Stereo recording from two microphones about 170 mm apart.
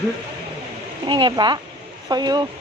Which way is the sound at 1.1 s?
25° right (ahead or behind).